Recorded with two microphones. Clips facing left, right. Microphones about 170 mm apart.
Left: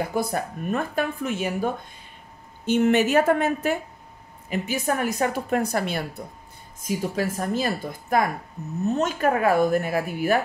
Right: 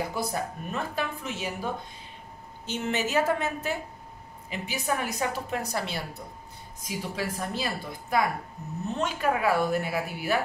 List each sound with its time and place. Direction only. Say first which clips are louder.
0.1 s a woman's voice: left 5 dB; 50° left (ahead or behind)